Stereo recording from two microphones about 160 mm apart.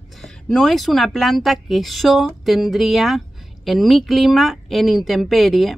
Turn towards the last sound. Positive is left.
turn(degrees=0)  # may be behind; listen again after turning